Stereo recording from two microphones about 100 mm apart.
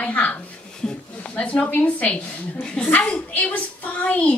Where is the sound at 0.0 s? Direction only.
15° left (ahead or behind).